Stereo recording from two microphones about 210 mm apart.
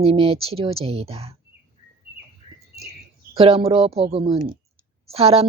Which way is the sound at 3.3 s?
30° right (ahead or behind).